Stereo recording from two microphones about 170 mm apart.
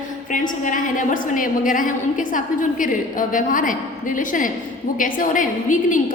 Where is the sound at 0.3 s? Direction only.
50° left (ahead or behind).